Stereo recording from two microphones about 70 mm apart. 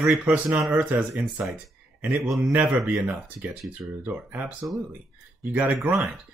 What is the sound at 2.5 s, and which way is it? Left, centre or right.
Speech, right.